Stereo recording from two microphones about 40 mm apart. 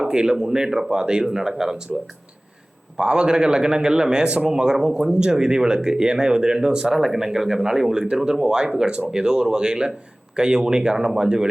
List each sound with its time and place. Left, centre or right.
0.1 s speech: centre
3.0 s a man's voice: right
6.9 s a man's voice: centre